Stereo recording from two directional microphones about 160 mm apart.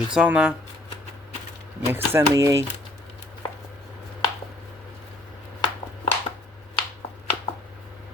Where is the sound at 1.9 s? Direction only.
15° right (ahead or behind).